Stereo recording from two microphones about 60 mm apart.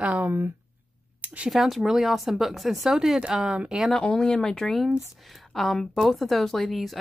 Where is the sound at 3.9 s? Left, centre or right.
Centre.